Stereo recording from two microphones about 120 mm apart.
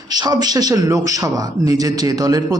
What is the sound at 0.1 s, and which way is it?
A man's voice, 35° right (ahead or behind).